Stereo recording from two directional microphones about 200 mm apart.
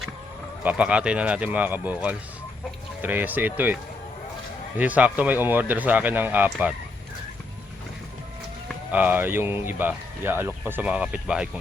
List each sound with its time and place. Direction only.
0.6 s speech: 5° right (ahead or behind)
4.8 s speech: 5° right (ahead or behind)
8.9 s speech: 10° right (ahead or behind)